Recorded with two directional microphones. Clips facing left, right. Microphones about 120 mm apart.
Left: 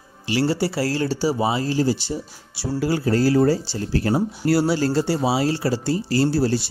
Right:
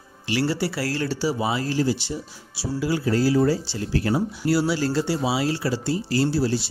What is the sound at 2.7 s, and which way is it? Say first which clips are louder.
Speech: left 2 dB; 45° left (ahead or behind).